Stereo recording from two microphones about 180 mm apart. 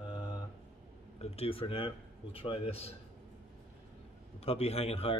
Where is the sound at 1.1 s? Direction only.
35° left (ahead or behind).